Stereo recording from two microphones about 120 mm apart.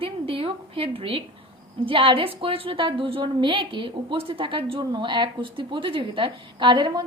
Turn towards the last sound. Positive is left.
turn(degrees=-40)  # may be behind; listen again after turning